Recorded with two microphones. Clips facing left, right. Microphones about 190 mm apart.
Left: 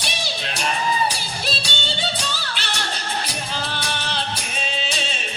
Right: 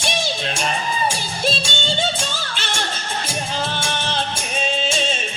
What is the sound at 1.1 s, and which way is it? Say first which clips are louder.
Music: right 5 dB; 45° right (ahead or behind).